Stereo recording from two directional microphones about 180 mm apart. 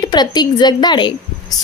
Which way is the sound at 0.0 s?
25° left (ahead or behind).